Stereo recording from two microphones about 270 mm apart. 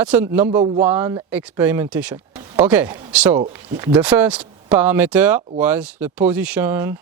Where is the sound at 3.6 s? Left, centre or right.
Centre.